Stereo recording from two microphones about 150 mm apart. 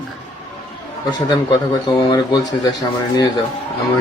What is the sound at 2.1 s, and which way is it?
Speech, 25° left (ahead or behind).